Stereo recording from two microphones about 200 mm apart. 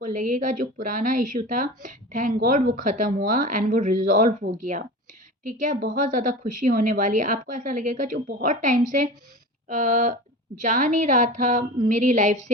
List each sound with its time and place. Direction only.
0.0 s speech: 40° right (ahead or behind)